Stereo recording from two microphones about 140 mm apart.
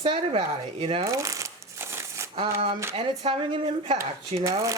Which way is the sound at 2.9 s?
40° right (ahead or behind).